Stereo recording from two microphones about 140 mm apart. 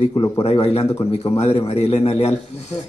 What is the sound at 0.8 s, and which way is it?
Speech, 20° left (ahead or behind).